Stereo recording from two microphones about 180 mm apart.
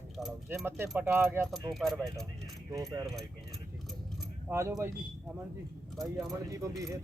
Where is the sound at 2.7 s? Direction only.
20° right (ahead or behind).